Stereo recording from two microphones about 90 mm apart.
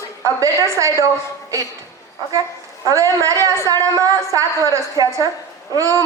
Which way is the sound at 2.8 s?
40° right (ahead or behind).